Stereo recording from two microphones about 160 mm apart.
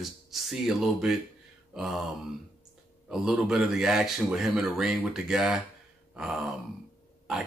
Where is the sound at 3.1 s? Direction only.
5° right (ahead or behind).